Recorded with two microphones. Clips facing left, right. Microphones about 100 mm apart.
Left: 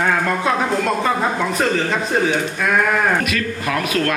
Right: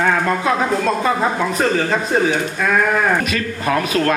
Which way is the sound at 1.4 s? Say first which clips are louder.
Right 1 dB; 30° right (ahead or behind).